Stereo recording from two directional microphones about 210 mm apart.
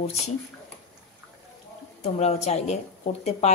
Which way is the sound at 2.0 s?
30° left (ahead or behind).